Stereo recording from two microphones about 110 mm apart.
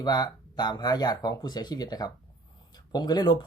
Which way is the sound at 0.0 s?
40° left (ahead or behind).